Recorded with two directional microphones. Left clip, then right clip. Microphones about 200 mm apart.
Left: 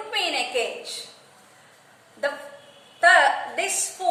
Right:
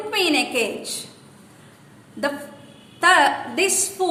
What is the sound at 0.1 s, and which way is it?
Speech, 50° right (ahead or behind).